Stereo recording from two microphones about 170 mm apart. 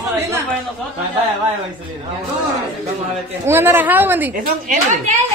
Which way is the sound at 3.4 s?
15° right (ahead or behind).